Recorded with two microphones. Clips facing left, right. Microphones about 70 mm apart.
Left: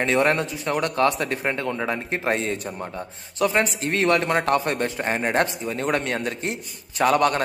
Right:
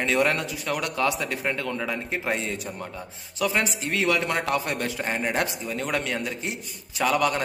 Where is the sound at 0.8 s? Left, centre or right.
Left.